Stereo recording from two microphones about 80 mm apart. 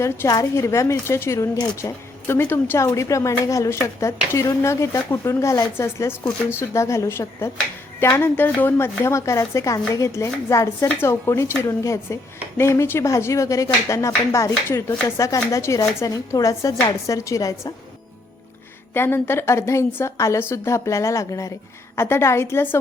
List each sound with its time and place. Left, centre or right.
0.3 s a woman's voice: left
0.6 s a woman's voice: left
2.7 s a woman's voice: left
10.8 s a woman's voice: left
18.9 s a woman's voice: left
21.9 s a woman's voice: left